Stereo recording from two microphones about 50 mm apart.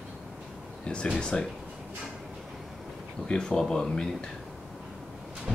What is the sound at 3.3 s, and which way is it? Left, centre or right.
Speech, centre.